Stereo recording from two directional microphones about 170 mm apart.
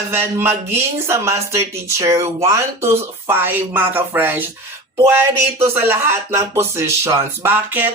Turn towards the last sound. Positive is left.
turn(degrees=-10)  # may be behind; listen again after turning